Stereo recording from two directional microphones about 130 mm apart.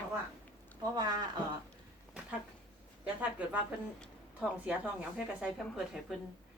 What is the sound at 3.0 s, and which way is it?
Speech, 10° right (ahead or behind).